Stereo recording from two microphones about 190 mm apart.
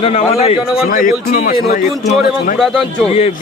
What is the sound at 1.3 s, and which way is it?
A man's voice, 50° left (ahead or behind).